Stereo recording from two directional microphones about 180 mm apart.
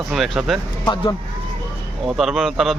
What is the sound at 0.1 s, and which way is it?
Speech, centre (ahead or behind).